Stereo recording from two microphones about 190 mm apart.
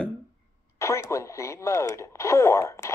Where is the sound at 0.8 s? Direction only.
15° left (ahead or behind).